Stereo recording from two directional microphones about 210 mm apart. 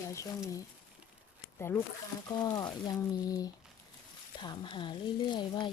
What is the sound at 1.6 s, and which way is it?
Speech, 10° left (ahead or behind).